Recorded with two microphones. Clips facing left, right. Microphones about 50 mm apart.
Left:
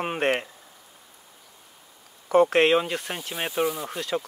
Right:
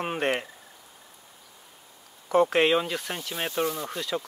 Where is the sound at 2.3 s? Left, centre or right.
Centre.